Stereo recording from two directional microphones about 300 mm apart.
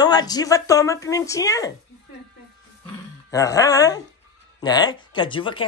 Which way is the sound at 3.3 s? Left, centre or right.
Centre.